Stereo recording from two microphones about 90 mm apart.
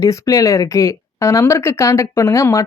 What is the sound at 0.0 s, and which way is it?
Speech, 40° left (ahead or behind).